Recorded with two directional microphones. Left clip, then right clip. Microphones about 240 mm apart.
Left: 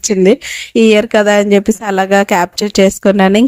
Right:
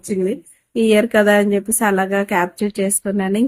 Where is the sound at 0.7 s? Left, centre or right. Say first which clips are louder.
Left 6 dB; left.